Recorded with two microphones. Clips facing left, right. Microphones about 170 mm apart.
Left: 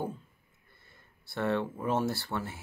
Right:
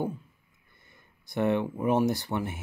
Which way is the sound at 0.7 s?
15° right (ahead or behind).